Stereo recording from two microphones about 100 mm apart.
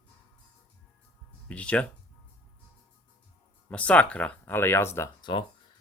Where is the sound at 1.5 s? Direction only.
10° left (ahead or behind).